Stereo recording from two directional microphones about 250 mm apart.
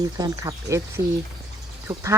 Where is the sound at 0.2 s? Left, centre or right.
Centre.